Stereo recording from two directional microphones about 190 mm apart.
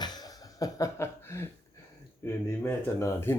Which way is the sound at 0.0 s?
20° left (ahead or behind).